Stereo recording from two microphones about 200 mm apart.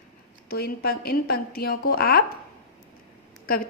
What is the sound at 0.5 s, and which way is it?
A woman's voice, 50° left (ahead or behind).